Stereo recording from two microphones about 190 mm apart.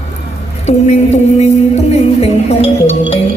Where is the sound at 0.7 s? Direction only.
35° left (ahead or behind).